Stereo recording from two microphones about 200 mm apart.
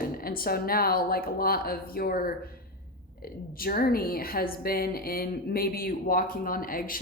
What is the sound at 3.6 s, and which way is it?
Speech, 45° left (ahead or behind).